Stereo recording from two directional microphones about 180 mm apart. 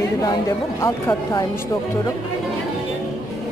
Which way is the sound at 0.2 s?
20° left (ahead or behind).